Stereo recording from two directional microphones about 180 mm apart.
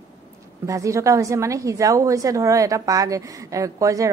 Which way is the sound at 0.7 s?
15° right (ahead or behind).